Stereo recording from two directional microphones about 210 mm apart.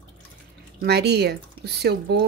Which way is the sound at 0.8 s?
50° right (ahead or behind).